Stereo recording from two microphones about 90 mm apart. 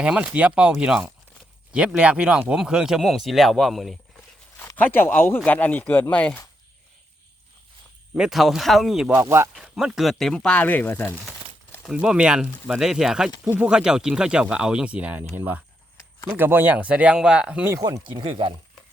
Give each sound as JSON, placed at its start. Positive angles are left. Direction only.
{"t": 0.0, "sound": "speech", "side_deg": -10}
{"t": 4.8, "sound": "speech", "side_deg": 25}
{"t": 8.1, "sound": "speech", "side_deg": -5}
{"t": 9.2, "sound": "speech", "side_deg": -30}
{"t": 9.6, "sound": "speech", "side_deg": -5}
{"t": 11.9, "sound": "speech", "side_deg": -10}
{"t": 18.2, "sound": "speech", "side_deg": -80}